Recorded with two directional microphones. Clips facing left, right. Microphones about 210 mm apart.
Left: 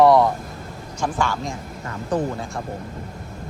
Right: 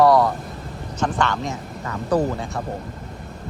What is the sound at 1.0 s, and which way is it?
Speech, 10° left (ahead or behind).